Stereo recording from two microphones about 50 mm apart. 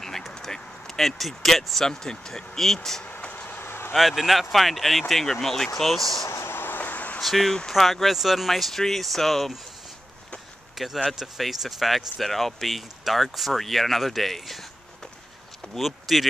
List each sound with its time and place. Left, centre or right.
0.0 s a sound: centre
1.9 s speech: centre
3.1 s vehicle: left
3.9 s speech: centre
6.2 s vehicle: left
6.6 s vehicle: left
7.2 s speech: centre
11.1 s speech: centre
15.8 s speech: centre